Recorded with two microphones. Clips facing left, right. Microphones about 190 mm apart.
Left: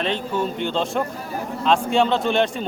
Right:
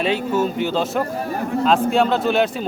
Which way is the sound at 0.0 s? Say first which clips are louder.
Right 4 dB; 5° right (ahead or behind).